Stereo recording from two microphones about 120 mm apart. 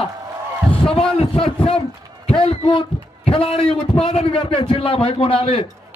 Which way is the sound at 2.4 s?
50° left (ahead or behind).